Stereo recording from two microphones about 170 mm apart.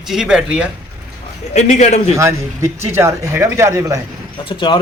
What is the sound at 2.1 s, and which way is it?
Speech, 15° right (ahead or behind).